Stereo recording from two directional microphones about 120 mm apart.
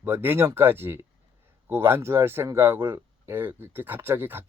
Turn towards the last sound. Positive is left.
turn(degrees=-20)  # may be behind; listen again after turning